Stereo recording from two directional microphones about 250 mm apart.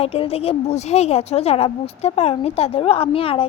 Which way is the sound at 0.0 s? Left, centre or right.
Left.